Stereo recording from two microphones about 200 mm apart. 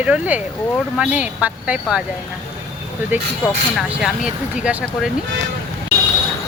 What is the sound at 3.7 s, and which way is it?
Speech, 5° right (ahead or behind).